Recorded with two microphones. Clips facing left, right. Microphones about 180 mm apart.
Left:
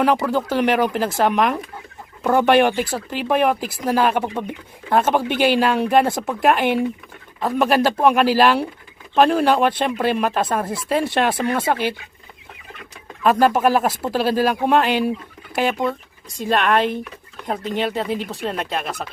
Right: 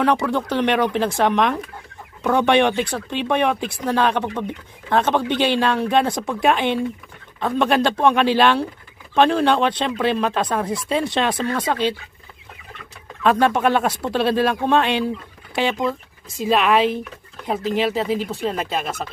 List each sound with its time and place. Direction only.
0.0 s speech: 5° left (ahead or behind)
11.3 s speech: 20° left (ahead or behind)
11.6 s speech: 10° left (ahead or behind)
13.2 s speech: 5° left (ahead or behind)
16.4 s speech: 5° right (ahead or behind)